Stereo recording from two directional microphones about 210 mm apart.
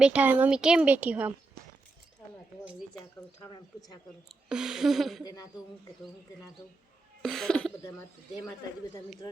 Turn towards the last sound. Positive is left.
turn(degrees=5)  # may be behind; listen again after turning